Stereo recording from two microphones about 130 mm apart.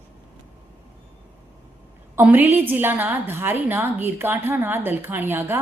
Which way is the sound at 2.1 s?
15° right (ahead or behind).